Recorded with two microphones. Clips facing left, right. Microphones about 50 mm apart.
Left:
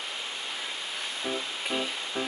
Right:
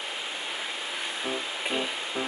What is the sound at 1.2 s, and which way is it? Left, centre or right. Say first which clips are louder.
Music: even; centre.